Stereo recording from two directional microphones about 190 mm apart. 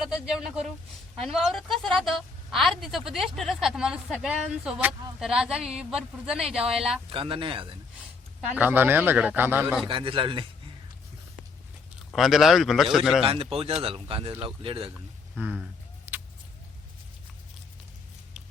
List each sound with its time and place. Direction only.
0.0 s a woman's voice: 5° right (ahead or behind)
7.1 s speech: 25° right (ahead or behind)
8.4 s a man's voice: 5° right (ahead or behind)
9.8 s speech: 25° right (ahead or behind)
12.1 s a woman's voice: centre (ahead or behind)
13.2 s speech: 30° right (ahead or behind)
15.4 s a woman's voice: 5° right (ahead or behind)
16.1 s vehicle: 10° right (ahead or behind)